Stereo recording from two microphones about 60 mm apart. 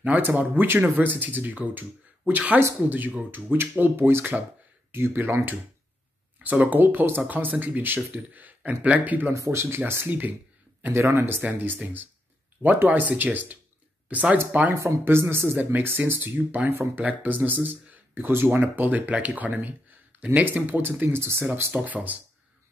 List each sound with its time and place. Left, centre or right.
0.0 s speech: right
6.4 s speech: right
6.8 s speech: right
9.3 s speech: right
10.0 s speech: right
10.9 s speech: right
11.5 s speech: right
12.8 s speech: right
14.8 s speech: right
21.8 s speech: right